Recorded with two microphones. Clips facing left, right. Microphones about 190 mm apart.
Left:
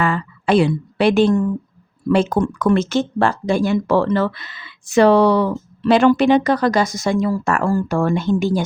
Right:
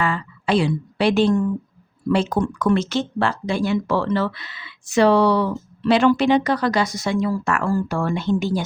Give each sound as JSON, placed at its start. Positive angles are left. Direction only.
{"t": 0.0, "sound": "a woman's voice", "side_deg": 50}